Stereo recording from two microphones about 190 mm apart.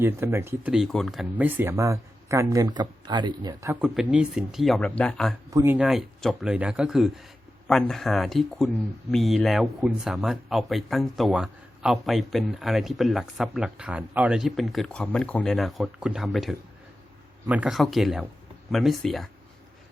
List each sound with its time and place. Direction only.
0.0 s speech: 15° right (ahead or behind); by 5.3 s 5° left (ahead or behind)
5.5 s speech: 15° right (ahead or behind)
5.7 s speech: centre (ahead or behind)